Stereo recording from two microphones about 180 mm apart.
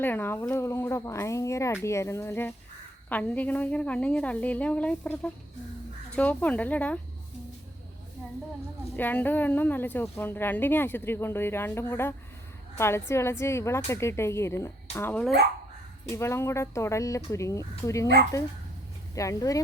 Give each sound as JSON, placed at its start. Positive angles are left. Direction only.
{"t": 0.0, "sound": "a woman's voice", "side_deg": 10}
{"t": 9.0, "sound": "a woman's voice", "side_deg": 10}
{"t": 15.1, "sound": "speech", "side_deg": 0}
{"t": 16.0, "sound": "a woman's voice", "side_deg": 15}
{"t": 19.1, "sound": "a woman's voice", "side_deg": 15}